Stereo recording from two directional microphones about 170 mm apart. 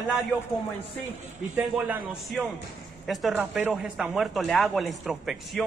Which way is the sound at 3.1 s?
Centre (ahead or behind).